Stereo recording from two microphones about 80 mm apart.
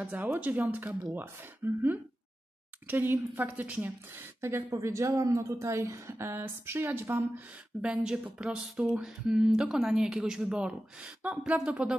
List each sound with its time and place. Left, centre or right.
0.0 s a woman's voice: right
7.9 s speech: centre